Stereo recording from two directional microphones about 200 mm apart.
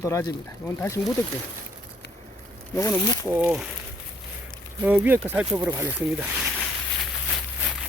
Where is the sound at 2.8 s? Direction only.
15° left (ahead or behind).